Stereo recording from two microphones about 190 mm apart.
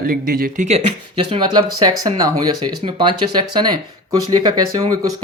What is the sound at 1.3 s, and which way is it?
Speech, 25° right (ahead or behind).